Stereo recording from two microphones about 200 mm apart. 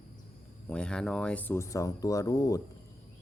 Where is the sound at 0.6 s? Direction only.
5° left (ahead or behind).